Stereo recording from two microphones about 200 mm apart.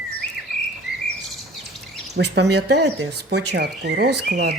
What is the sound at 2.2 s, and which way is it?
Speech, 60° right (ahead or behind).